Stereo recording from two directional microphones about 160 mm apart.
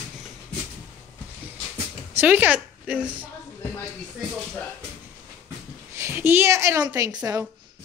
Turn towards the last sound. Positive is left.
turn(degrees=-20)  # may be behind; listen again after turning